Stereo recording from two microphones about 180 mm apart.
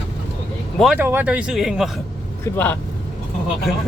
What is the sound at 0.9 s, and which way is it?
Speech, 10° right (ahead or behind).